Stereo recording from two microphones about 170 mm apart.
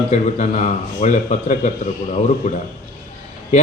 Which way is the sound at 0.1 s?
45° left (ahead or behind).